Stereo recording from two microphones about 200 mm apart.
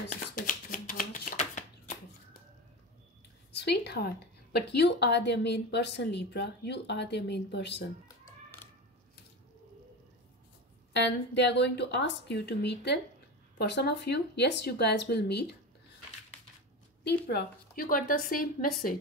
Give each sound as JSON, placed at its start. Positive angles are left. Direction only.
{"t": 0.1, "sound": "shuffling cards", "side_deg": 40}
{"t": 3.5, "sound": "speech", "side_deg": 55}
{"t": 10.9, "sound": "speech", "side_deg": 65}
{"t": 17.3, "sound": "a woman's voice", "side_deg": 50}